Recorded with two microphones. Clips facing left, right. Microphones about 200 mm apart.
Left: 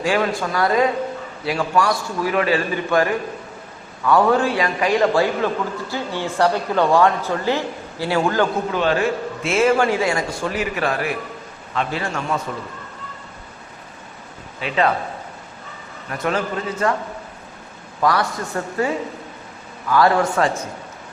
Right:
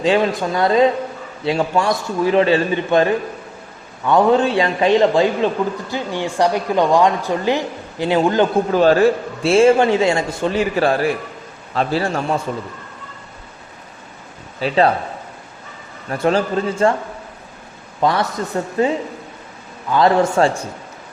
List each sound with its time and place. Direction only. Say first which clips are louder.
0.0 s a man's voice: right 4 dB; 20° right (ahead or behind)
8.7 s a man's voice: right 7 dB; 40° right (ahead or behind)
14.6 s a man's voice: right 4 dB; 35° right (ahead or behind)
16.0 s a man's voice: right 5 dB; 30° right (ahead or behind)
18.0 s a man's voice: right 2 dB; 20° right (ahead or behind)